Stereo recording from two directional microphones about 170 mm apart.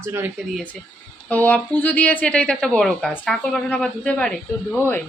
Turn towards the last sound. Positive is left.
turn(degrees=10)  # may be behind; listen again after turning